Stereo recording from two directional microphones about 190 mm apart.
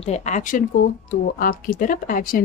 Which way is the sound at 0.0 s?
35° left (ahead or behind).